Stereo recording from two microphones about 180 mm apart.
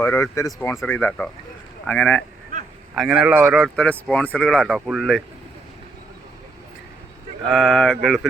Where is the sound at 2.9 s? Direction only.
5° right (ahead or behind).